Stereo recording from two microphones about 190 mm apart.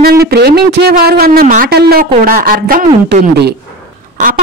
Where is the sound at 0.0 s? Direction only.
55° right (ahead or behind).